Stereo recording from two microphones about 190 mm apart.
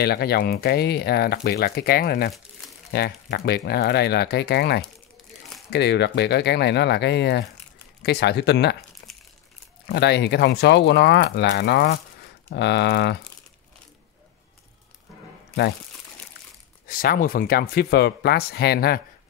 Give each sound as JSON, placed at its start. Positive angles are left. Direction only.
{"t": 0.0, "sound": "speech", "side_deg": 55}
{"t": 9.0, "sound": "crumpling", "side_deg": 65}
{"t": 9.8, "sound": "speech", "side_deg": 60}
{"t": 16.8, "sound": "speech", "side_deg": 50}